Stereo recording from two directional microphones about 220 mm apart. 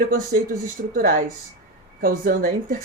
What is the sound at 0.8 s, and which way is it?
Speech, 40° right (ahead or behind).